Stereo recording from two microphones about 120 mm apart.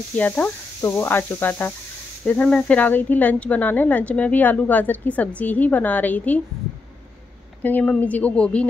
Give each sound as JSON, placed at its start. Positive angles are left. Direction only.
{"t": 0.1, "sound": "speech", "side_deg": 15}
{"t": 7.6, "sound": "speech", "side_deg": 10}